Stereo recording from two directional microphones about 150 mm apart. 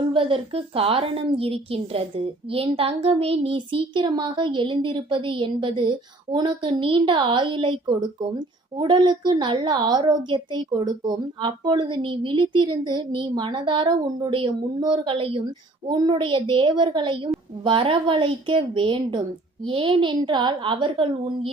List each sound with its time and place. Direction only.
0.1 s a woman's voice: 35° right (ahead or behind)